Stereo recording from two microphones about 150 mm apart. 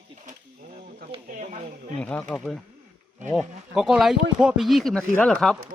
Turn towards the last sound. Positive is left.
turn(degrees=5)  # may be behind; listen again after turning